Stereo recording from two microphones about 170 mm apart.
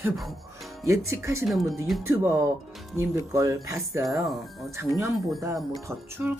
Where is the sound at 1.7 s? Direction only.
Centre (ahead or behind).